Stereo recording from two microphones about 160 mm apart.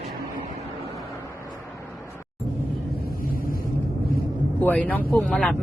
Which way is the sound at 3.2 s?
65° left (ahead or behind).